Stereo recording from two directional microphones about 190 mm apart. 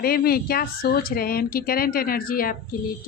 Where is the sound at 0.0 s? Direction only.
55° left (ahead or behind).